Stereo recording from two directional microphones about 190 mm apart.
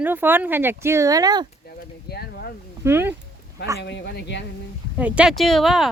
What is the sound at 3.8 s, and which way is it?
Speech, 65° left (ahead or behind).